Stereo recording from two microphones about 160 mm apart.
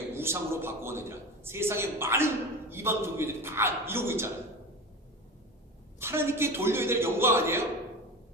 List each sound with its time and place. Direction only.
0.1 s a man's voice: 15° right (ahead or behind)
6.0 s a man's voice: 15° right (ahead or behind)